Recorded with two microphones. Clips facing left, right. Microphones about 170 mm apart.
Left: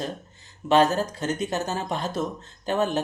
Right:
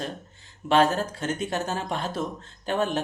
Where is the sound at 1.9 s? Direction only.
40° left (ahead or behind).